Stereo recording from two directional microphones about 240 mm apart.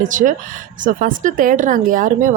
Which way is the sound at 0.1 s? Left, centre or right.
Right.